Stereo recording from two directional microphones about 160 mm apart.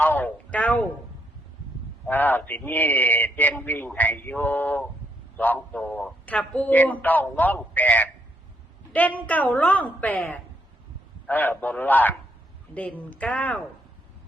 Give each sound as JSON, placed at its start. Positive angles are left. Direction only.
{"t": 0.0, "sound": "speech", "side_deg": 10}
{"t": 2.0, "sound": "a man's voice", "side_deg": 10}